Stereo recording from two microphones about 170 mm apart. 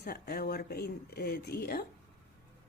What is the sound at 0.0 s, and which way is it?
Speech, 65° left (ahead or behind).